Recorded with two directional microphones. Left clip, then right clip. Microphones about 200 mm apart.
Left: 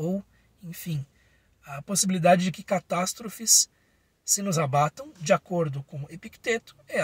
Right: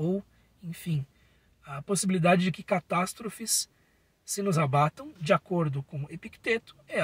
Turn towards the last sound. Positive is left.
turn(degrees=15)  # may be behind; listen again after turning